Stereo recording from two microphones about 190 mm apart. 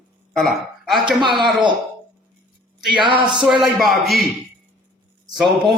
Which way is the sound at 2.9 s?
25° right (ahead or behind).